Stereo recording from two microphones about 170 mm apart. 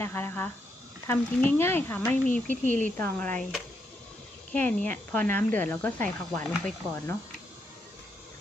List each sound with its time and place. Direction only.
0.0 s speech: 15° left (ahead or behind)
2.6 s a woman's voice: 50° right (ahead or behind)
3.0 s speech: 10° left (ahead or behind)